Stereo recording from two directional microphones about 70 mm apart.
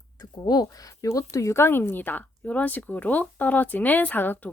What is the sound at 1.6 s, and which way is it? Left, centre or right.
Speech, left.